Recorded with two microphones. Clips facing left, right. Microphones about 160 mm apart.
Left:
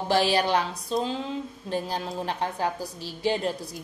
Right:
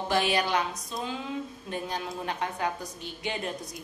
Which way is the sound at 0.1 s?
35° left (ahead or behind).